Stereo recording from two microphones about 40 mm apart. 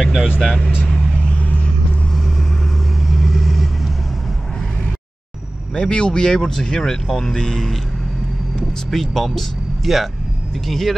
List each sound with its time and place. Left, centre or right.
0.0 s speech: centre
0.8 s vehicle: centre
3.1 s vehicle: centre
5.8 s speech: left
8.9 s speech: centre